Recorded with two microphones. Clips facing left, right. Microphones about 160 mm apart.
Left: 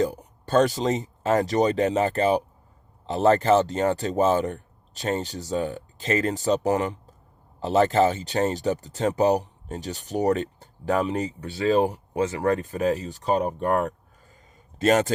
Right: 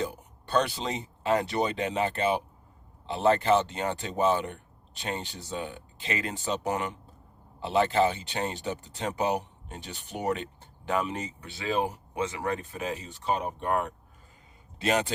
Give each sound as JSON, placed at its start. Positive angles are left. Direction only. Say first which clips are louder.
{"t": 0.0, "sound": "a man's voice", "louder": "left 8 dB", "side_deg": 40}